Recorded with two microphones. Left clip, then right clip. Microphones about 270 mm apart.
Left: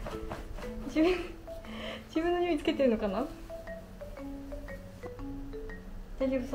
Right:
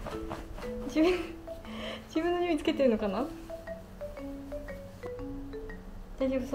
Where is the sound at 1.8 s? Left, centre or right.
Centre.